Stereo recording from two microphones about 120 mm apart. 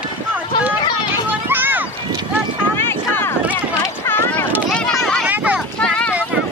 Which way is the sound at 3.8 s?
25° left (ahead or behind).